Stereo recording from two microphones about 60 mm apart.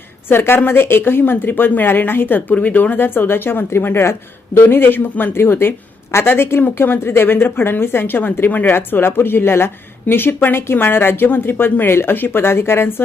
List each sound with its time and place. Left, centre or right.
0.3 s speech: left